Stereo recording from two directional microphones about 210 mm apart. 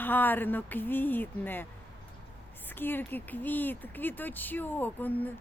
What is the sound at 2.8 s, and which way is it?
Speech, 10° left (ahead or behind).